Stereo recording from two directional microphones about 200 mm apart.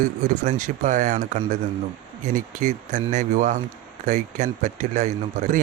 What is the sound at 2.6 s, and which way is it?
Speech, 35° right (ahead or behind).